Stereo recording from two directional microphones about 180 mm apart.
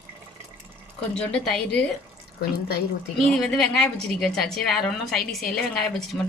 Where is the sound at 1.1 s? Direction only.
5° left (ahead or behind).